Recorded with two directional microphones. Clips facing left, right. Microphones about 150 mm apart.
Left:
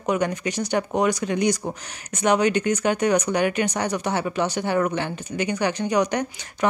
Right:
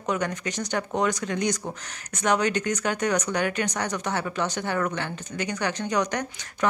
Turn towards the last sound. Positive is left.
turn(degrees=20)  # may be behind; listen again after turning